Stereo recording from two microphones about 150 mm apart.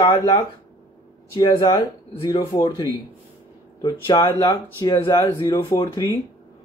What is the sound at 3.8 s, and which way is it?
Speech, 25° left (ahead or behind).